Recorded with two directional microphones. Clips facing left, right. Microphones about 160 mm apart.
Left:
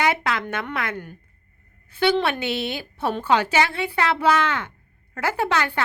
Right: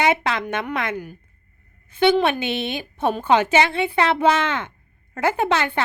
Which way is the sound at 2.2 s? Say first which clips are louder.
Right 2 dB; 20° right (ahead or behind).